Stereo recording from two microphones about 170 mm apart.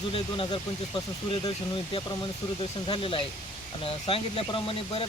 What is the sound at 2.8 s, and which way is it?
Speech, 30° left (ahead or behind).